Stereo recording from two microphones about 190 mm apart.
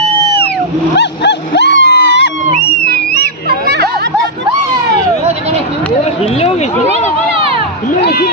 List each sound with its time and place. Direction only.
0.9 s music: 65° left (ahead or behind)
2.9 s music: 60° right (ahead or behind)
7.9 s a sound: 55° left (ahead or behind)